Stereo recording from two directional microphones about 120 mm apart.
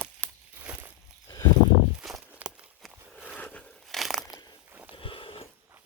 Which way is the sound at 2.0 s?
5° right (ahead or behind).